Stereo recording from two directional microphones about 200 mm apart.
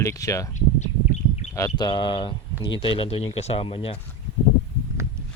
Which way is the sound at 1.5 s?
20° left (ahead or behind).